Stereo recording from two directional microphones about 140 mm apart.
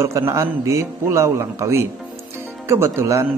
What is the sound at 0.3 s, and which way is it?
Speech, 20° right (ahead or behind).